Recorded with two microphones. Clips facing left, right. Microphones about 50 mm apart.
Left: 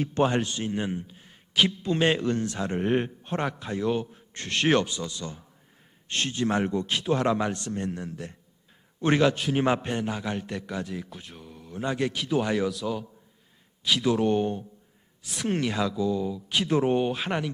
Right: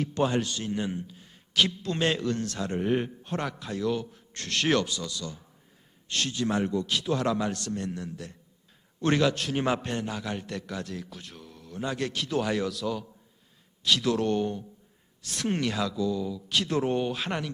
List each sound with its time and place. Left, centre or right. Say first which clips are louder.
0.0 s a man's voice: left 2 dB; left
9.0 s a man's voice: left 2 dB; centre
15.2 s a man's voice: left 1 dB; centre